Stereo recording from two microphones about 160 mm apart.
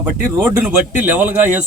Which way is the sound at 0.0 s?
10° right (ahead or behind).